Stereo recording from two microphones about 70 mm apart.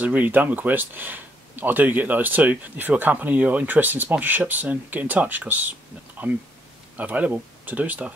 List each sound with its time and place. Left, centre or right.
0.0 s speech: right